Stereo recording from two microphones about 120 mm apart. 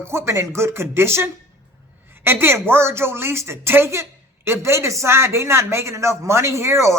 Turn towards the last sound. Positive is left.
turn(degrees=-25)  # may be behind; listen again after turning